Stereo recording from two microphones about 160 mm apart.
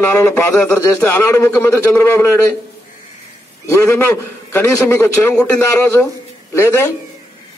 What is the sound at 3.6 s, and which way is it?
A man's voice, 15° left (ahead or behind).